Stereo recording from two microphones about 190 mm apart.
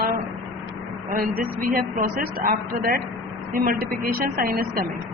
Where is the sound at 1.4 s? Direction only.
50° right (ahead or behind).